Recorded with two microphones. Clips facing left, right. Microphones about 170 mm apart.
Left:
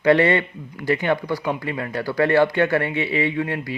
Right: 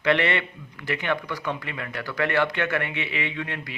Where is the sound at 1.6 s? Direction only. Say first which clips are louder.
Left 8 dB; 30° left (ahead or behind).